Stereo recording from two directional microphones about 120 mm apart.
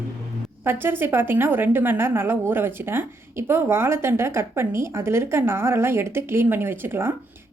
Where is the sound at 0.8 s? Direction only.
15° right (ahead or behind).